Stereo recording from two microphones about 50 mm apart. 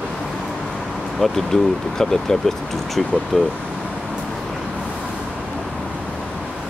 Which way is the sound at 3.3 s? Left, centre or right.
Centre.